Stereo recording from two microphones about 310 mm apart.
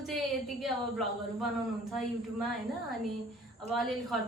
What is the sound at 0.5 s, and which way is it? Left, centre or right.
Speech, centre.